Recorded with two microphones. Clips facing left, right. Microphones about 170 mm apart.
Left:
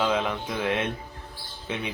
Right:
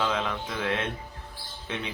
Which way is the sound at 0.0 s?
15° left (ahead or behind).